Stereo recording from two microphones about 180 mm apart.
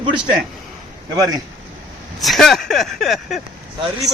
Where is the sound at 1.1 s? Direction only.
20° right (ahead or behind).